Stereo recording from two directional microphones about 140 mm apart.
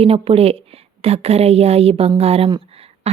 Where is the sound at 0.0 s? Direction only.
45° right (ahead or behind).